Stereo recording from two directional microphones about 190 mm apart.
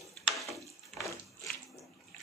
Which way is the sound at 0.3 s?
Centre (ahead or behind).